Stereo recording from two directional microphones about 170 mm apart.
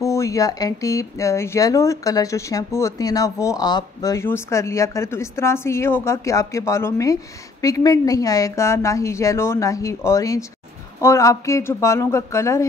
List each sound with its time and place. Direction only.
0.0 s a woman's voice: 20° left (ahead or behind)